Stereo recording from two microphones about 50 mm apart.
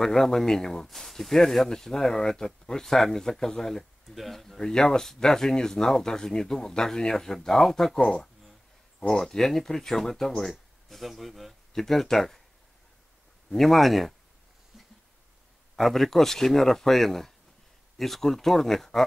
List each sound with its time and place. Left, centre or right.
0.0 s speech: centre
13.5 s speech: centre
15.7 s speech: centre